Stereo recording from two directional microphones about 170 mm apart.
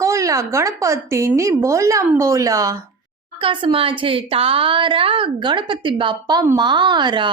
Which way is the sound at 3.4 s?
30° right (ahead or behind).